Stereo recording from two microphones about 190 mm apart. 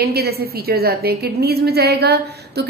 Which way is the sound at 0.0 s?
55° right (ahead or behind).